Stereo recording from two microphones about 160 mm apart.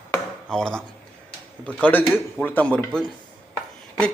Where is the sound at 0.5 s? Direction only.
5° left (ahead or behind).